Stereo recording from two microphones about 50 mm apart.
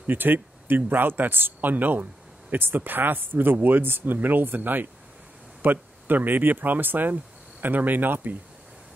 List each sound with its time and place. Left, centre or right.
0.0 s speech: right